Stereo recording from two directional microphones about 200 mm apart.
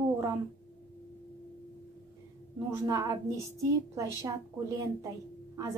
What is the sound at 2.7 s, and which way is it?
A woman's voice, 15° right (ahead or behind).